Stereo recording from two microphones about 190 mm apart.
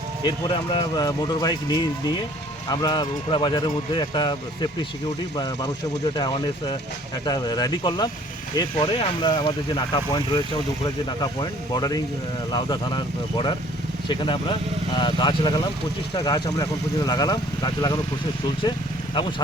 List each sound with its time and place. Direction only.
0.3 s speech: 25° left (ahead or behind)
6.1 s speech: 20° left (ahead or behind)